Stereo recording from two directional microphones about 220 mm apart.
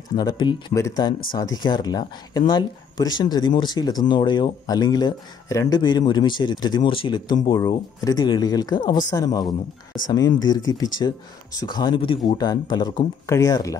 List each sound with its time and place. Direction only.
0.1 s speech: 20° left (ahead or behind)